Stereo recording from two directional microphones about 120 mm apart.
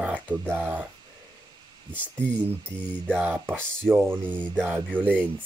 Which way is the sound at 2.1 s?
10° left (ahead or behind).